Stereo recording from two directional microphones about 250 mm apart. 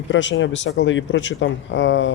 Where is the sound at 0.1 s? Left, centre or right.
Left.